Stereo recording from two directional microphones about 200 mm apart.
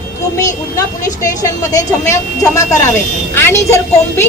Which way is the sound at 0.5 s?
15° left (ahead or behind).